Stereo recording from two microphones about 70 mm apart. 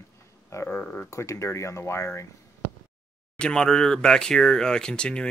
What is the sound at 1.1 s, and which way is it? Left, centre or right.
Speech, left.